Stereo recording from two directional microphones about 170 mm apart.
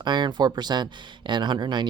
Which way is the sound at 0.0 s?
25° right (ahead or behind).